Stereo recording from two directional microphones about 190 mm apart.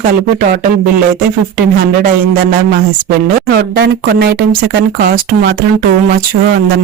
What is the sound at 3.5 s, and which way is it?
Speech, 55° right (ahead or behind).